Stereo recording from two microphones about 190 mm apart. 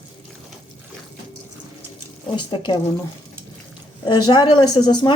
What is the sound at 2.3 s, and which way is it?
Speech, 25° left (ahead or behind).